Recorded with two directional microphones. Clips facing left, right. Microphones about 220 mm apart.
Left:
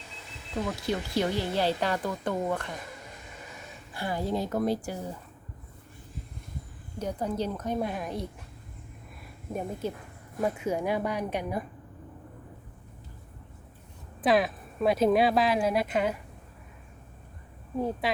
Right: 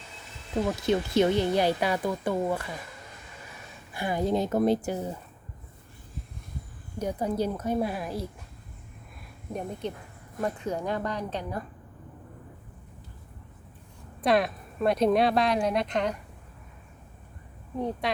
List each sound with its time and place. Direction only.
0.9 s a woman's voice: 20° right (ahead or behind)
3.9 s speech: 15° right (ahead or behind)
7.0 s a woman's voice: 10° right (ahead or behind)
9.5 s speech: 5° left (ahead or behind)
14.2 s speech: centre (ahead or behind)
17.7 s speech: 5° left (ahead or behind)